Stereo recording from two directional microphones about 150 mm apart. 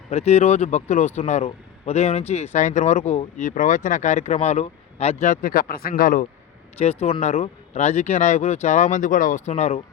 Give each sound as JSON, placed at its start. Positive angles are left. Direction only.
{"t": 0.1, "sound": "speech", "side_deg": 45}
{"t": 5.9, "sound": "speech", "side_deg": 65}
{"t": 6.7, "sound": "speech", "side_deg": 45}